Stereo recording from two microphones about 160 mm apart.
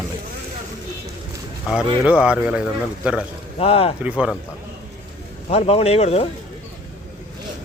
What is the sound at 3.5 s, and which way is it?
Speech, 35° left (ahead or behind).